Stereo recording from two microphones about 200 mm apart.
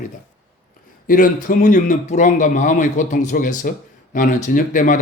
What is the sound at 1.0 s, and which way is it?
A man's voice, 45° left (ahead or behind).